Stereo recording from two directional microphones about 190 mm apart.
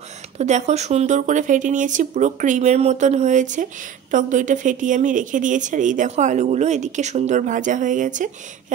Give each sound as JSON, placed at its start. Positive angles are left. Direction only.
{"t": 0.4, "sound": "a woman's voice", "side_deg": -35}